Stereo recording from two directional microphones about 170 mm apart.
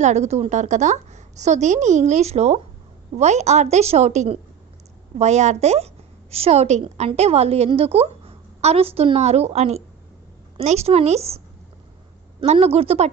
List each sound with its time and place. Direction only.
0.0 s a woman's voice: 40° right (ahead or behind)